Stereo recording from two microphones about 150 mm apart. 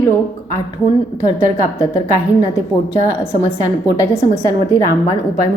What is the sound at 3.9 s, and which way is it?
Speech, 20° left (ahead or behind).